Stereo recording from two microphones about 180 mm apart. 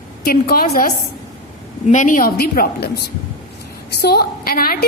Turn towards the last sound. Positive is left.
turn(degrees=55)  # may be behind; listen again after turning